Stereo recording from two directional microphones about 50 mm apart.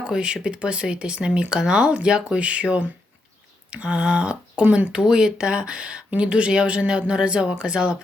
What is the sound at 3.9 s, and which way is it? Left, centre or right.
Speech, right.